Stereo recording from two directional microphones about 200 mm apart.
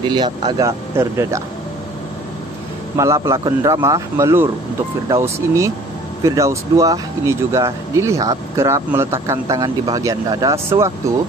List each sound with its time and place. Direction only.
0.0 s speech: 20° right (ahead or behind)
3.0 s speech: 15° right (ahead or behind)